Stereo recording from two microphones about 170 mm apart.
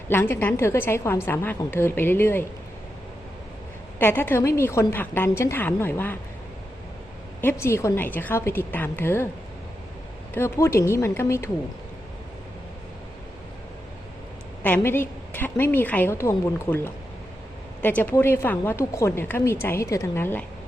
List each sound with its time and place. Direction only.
0.1 s speech: 15° left (ahead or behind)
3.9 s speech: 10° left (ahead or behind)
7.4 s speech: 15° left (ahead or behind)
10.3 s speech: 15° left (ahead or behind)
14.6 s speech: 10° left (ahead or behind)